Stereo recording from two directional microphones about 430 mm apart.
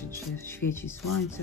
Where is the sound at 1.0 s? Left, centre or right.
Left.